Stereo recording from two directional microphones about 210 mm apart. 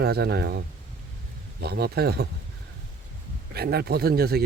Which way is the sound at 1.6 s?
50° right (ahead or behind).